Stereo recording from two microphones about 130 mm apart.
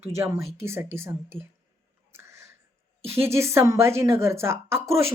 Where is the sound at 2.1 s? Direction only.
20° right (ahead or behind).